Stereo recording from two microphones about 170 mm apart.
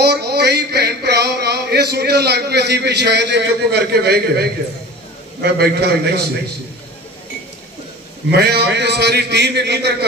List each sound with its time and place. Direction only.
0.0 s a sound: 75° right (ahead or behind)
5.4 s a man's voice: 75° right (ahead or behind)
8.3 s a man's voice: 70° right (ahead or behind)